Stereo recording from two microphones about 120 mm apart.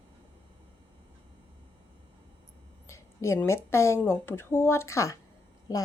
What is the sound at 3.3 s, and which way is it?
A woman's voice, 20° left (ahead or behind).